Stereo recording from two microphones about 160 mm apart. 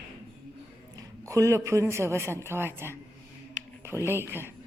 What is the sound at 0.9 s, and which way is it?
A woman's voice, 20° right (ahead or behind).